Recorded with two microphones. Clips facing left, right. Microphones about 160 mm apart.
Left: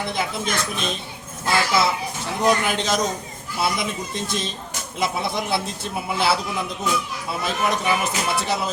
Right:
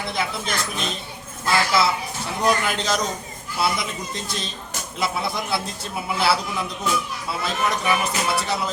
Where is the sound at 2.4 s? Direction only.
20° left (ahead or behind).